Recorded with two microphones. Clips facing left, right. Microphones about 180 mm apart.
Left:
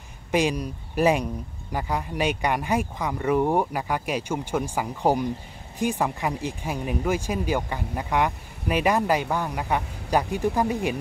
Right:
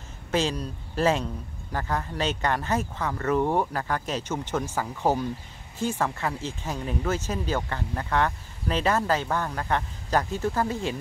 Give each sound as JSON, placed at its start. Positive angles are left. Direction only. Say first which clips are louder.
{"t": 0.3, "sound": "speech", "louder": "left 3 dB", "side_deg": 15}